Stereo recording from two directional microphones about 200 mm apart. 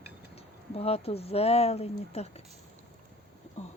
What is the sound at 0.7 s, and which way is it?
Speech, 30° left (ahead or behind).